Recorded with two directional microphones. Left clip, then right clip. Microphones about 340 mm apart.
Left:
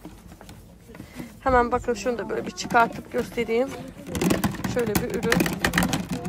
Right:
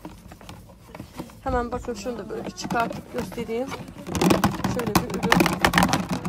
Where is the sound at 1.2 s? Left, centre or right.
Centre.